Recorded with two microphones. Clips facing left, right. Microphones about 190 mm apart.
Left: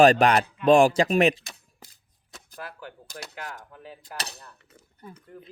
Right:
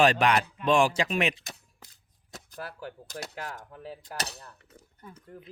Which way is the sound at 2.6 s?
40° right (ahead or behind).